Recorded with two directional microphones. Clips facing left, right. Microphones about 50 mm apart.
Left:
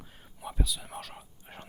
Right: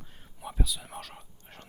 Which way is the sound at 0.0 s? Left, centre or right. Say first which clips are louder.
Even; centre.